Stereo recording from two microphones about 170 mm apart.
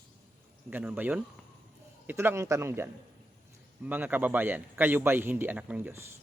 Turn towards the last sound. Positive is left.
turn(degrees=-10)  # may be behind; listen again after turning